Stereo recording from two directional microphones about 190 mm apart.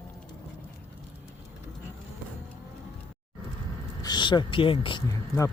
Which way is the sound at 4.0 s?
25° left (ahead or behind).